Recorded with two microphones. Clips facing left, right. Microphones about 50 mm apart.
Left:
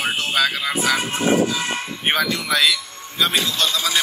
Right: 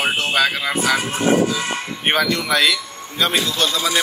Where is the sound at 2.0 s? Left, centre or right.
Centre.